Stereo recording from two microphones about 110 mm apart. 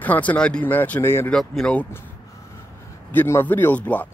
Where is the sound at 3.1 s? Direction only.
20° left (ahead or behind).